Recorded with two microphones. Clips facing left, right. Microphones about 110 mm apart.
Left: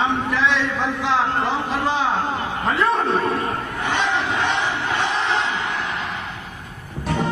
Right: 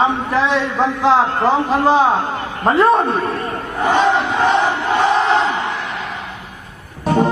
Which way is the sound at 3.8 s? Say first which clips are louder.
Right 9 dB; 40° right (ahead or behind).